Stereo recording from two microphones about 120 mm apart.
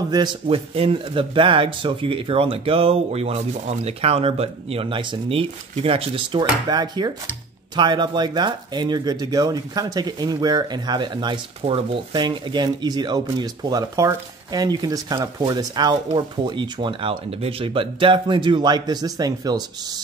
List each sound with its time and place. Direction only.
0.5 s speech: 50° right (ahead or behind)
6.7 s speech: 35° right (ahead or behind)
11.6 s speech: 50° right (ahead or behind)
17.4 s speech: 50° right (ahead or behind); by 19.6 s 35° right (ahead or behind)